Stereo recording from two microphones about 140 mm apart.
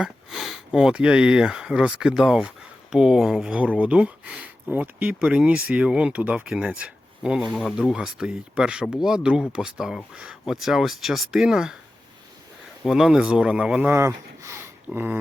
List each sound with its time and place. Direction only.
0.0 s speech: centre (ahead or behind)
12.8 s speech: 5° right (ahead or behind)
13.9 s speech: 20° right (ahead or behind)